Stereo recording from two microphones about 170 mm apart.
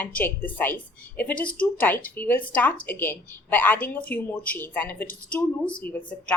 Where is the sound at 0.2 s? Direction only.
10° left (ahead or behind).